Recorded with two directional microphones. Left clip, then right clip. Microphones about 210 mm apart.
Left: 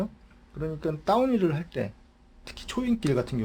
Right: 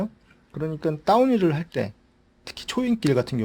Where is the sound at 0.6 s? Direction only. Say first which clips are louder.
Right 4 dB; 45° right (ahead or behind).